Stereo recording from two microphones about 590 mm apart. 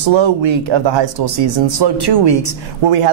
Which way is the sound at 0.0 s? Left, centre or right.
Right.